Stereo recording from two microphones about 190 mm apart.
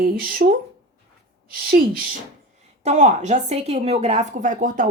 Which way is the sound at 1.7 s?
50° right (ahead or behind).